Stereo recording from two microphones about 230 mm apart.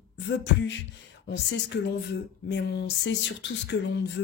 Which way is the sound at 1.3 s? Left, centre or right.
Left.